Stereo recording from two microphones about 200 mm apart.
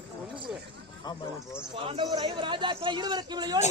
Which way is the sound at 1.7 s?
25° right (ahead or behind).